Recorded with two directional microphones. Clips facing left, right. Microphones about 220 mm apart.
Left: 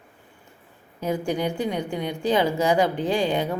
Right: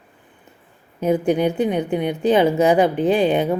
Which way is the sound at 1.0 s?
20° right (ahead or behind).